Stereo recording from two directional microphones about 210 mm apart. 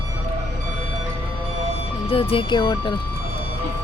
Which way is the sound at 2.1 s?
25° left (ahead or behind).